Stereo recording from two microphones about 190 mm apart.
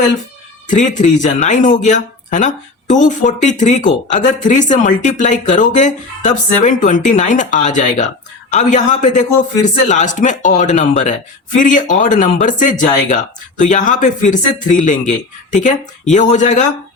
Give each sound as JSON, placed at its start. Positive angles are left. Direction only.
{"t": 0.7, "sound": "speech", "side_deg": 40}
{"t": 16.1, "sound": "speech", "side_deg": 40}